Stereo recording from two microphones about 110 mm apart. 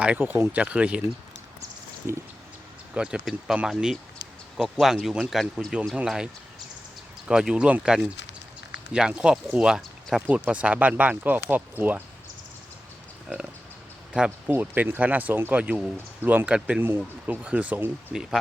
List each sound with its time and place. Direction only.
0.0 s speech: 15° right (ahead or behind)
2.9 s speech: 10° right (ahead or behind)
14.3 s speech: 20° right (ahead or behind)
16.6 s speech: 5° right (ahead or behind)
18.1 s speech: 5° right (ahead or behind)